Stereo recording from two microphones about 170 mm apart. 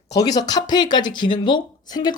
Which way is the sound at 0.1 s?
20° left (ahead or behind).